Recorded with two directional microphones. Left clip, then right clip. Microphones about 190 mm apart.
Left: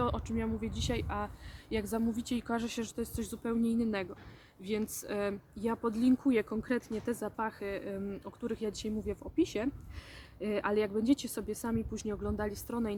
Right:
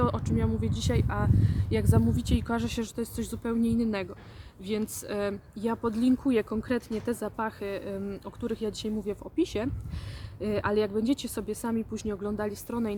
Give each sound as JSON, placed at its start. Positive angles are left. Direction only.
{"t": 0.0, "sound": "speech", "side_deg": -10}